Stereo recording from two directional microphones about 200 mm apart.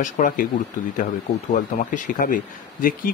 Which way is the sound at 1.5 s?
40° left (ahead or behind).